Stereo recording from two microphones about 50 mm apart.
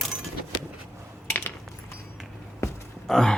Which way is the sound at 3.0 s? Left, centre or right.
Centre.